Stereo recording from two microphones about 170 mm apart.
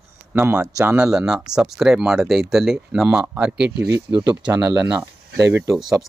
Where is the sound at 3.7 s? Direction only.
75° right (ahead or behind).